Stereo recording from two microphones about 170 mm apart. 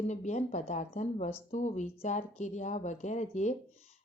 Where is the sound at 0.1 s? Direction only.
45° left (ahead or behind).